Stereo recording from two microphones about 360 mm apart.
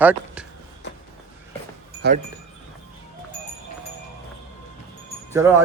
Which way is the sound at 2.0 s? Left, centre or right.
Right.